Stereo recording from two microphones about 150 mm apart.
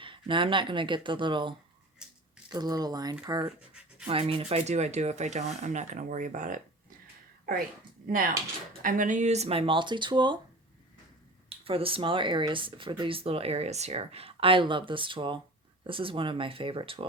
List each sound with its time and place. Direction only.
0.0 s speech: 35° right (ahead or behind)
2.0 s a sound: 5° right (ahead or behind)
2.5 s speech: 25° right (ahead or behind)
4.0 s speech: 40° right (ahead or behind); by 6.6 s 60° right (ahead or behind)
8.0 s speech: 65° right (ahead or behind); by 10.3 s 30° right (ahead or behind)
11.4 s speech: 40° right (ahead or behind)